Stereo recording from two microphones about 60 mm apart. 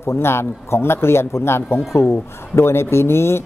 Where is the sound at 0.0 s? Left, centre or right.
Left.